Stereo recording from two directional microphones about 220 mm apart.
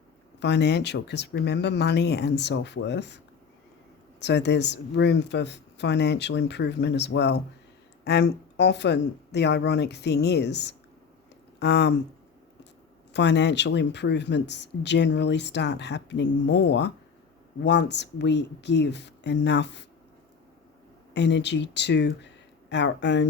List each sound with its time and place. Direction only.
0.3 s speech: 50° left (ahead or behind)
4.2 s speech: 50° left (ahead or behind)
13.1 s speech: 50° left (ahead or behind)
21.1 s speech: 50° left (ahead or behind)